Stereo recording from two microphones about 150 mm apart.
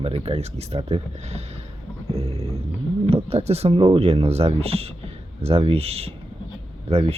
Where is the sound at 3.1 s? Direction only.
40° right (ahead or behind).